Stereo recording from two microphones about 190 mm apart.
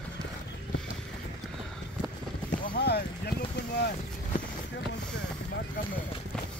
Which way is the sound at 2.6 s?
55° left (ahead or behind).